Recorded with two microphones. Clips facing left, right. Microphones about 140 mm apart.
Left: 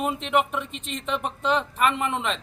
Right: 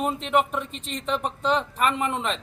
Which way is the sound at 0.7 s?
40° right (ahead or behind).